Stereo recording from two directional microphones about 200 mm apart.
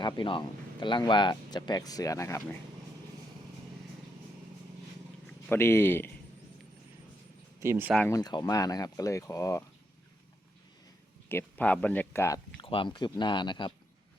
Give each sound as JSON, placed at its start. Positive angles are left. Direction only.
{"t": 0.0, "sound": "speech", "side_deg": 25}
{"t": 5.5, "sound": "speech", "side_deg": 10}
{"t": 7.6, "sound": "speech", "side_deg": -10}
{"t": 7.9, "sound": "speech", "side_deg": 10}
{"t": 11.3, "sound": "speech", "side_deg": 10}
{"t": 12.6, "sound": "speech", "side_deg": 25}